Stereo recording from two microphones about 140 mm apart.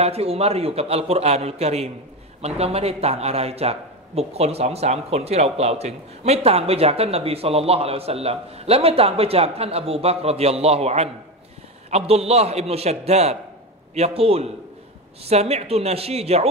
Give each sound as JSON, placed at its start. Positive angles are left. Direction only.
{"t": 0.0, "sound": "a man's voice", "side_deg": -45}